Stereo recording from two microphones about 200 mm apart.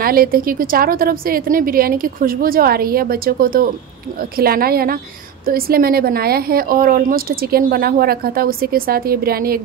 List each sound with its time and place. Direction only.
0.0 s speech: 45° right (ahead or behind)